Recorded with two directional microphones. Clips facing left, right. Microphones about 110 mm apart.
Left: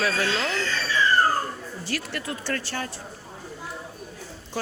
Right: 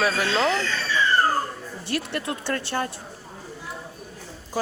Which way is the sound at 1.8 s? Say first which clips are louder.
Right 4 dB; 20° right (ahead or behind).